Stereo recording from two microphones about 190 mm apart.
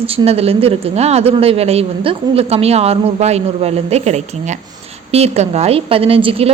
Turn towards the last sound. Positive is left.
turn(degrees=-30)  # may be behind; listen again after turning